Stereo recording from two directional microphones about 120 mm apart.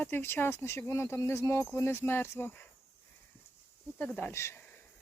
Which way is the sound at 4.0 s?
15° left (ahead or behind).